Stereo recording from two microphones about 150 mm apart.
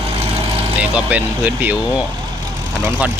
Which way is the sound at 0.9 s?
10° right (ahead or behind).